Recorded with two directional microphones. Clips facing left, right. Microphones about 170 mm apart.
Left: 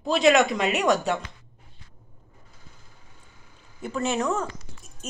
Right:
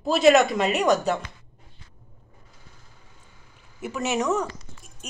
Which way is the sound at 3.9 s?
10° right (ahead or behind).